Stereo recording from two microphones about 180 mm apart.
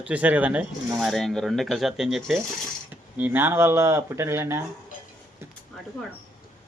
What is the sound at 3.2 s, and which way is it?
Speech, 10° right (ahead or behind).